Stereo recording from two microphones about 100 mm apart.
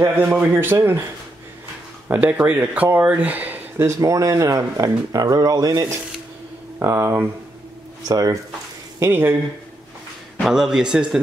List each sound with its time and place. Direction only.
0.0 s speech: 25° right (ahead or behind)
2.0 s speech: 15° right (ahead or behind)
3.8 s speech: 35° right (ahead or behind)
6.8 s speech: 25° right (ahead or behind)
8.1 s speech: 40° right (ahead or behind)
9.0 s speech: 20° right (ahead or behind)
10.4 s a man's voice: 5° right (ahead or behind)